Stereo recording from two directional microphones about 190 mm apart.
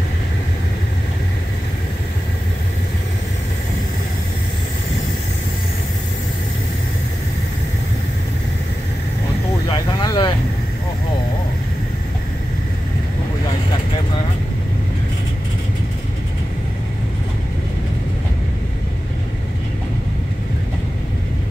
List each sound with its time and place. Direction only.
9.7 s vehicle: 25° left (ahead or behind)